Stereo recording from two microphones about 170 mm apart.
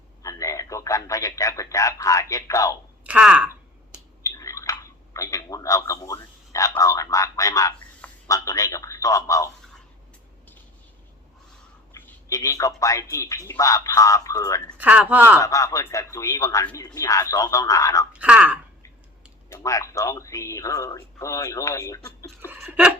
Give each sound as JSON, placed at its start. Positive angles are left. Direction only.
{"t": 0.2, "sound": "a man's voice", "side_deg": 20}
{"t": 3.0, "sound": "speech", "side_deg": -5}
{"t": 4.2, "sound": "speech", "side_deg": 20}
{"t": 11.9, "sound": "speech", "side_deg": 15}
{"t": 14.8, "sound": "speech", "side_deg": -10}
{"t": 15.4, "sound": "speech", "side_deg": 20}
{"t": 18.1, "sound": "speech", "side_deg": -10}
{"t": 19.5, "sound": "speech", "side_deg": 20}
{"t": 22.4, "sound": "a sound", "side_deg": -10}